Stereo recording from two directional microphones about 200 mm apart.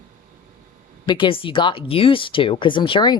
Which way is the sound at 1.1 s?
25° left (ahead or behind).